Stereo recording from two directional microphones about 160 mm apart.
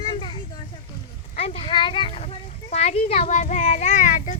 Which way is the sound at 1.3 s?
45° left (ahead or behind).